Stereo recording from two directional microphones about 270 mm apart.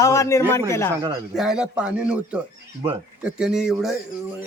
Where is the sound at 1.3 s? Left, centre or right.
Centre.